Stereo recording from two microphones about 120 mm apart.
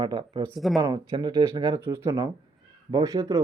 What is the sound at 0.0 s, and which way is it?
Speech, 40° right (ahead or behind).